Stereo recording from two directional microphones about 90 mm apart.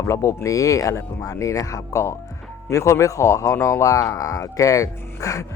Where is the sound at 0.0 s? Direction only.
35° left (ahead or behind).